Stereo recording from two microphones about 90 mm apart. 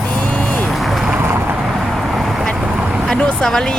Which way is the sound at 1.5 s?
5° right (ahead or behind).